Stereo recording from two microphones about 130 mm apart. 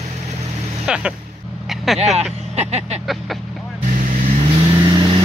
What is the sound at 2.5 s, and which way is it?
Vehicle, 55° right (ahead or behind).